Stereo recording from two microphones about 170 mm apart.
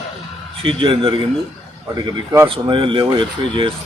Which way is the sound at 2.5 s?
30° right (ahead or behind).